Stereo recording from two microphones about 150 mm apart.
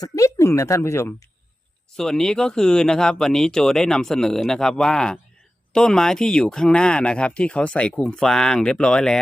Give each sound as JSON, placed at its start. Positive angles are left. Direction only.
{"t": 0.0, "sound": "speech", "side_deg": 20}
{"t": 2.0, "sound": "speech", "side_deg": 5}